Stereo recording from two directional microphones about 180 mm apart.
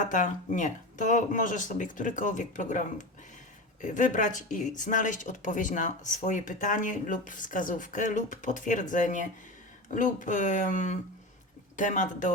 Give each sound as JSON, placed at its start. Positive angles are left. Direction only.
{"t": 0.0, "sound": "speech", "side_deg": 45}